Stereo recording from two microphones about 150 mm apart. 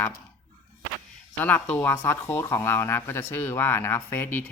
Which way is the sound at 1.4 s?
10° left (ahead or behind).